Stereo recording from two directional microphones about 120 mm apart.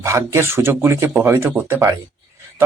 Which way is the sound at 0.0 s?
25° right (ahead or behind).